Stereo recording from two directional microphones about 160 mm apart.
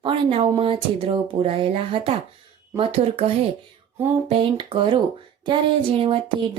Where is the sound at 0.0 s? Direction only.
35° right (ahead or behind).